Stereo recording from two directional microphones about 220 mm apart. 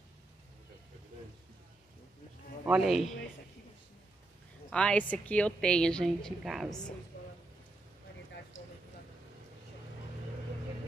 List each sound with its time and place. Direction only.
2.6 s a woman's voice: centre (ahead or behind)
4.6 s a woman's voice: 5° left (ahead or behind)
8.5 s a sound: 30° left (ahead or behind)